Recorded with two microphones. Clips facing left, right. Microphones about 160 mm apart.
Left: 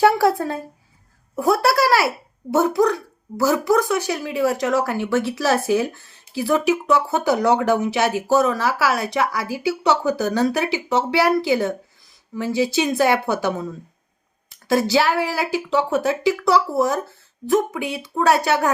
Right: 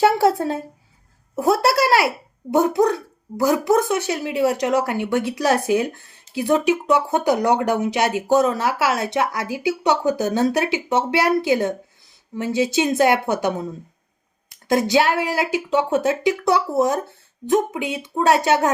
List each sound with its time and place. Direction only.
0.0 s speech: 20° right (ahead or behind)